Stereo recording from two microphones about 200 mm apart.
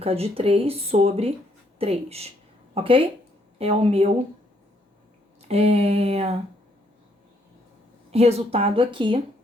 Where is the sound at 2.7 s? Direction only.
25° right (ahead or behind).